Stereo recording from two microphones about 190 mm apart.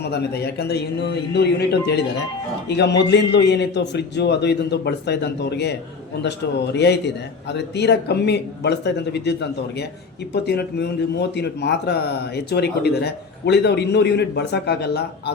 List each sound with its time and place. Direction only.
0.0 s a man's voice: 60° left (ahead or behind)
6.7 s a man's voice: 65° left (ahead or behind)